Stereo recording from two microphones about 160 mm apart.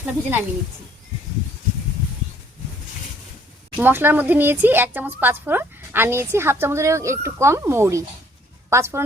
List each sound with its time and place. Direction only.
0.0 s speech: 10° right (ahead or behind)
3.8 s speech: 10° right (ahead or behind)